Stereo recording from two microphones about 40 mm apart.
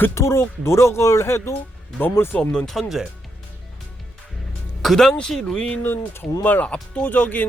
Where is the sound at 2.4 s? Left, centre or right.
Left.